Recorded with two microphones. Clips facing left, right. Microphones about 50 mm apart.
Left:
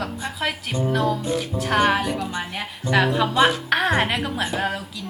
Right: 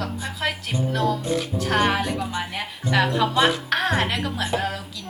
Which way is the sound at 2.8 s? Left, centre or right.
Centre.